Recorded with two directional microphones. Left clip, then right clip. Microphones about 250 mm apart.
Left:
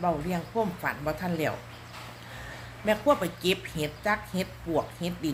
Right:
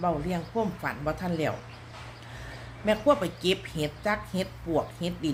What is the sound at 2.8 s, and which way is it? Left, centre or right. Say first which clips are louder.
A woman's voice: right 1 dB; centre.